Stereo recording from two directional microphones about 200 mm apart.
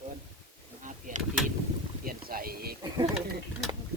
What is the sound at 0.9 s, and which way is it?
Vehicle, 40° right (ahead or behind).